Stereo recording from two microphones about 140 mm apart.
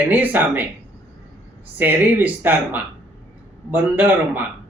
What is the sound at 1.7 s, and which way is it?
Speech, 10° right (ahead or behind).